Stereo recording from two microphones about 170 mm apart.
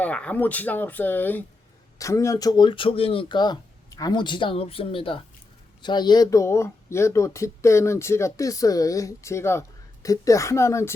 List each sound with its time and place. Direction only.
0.0 s speech: 10° left (ahead or behind)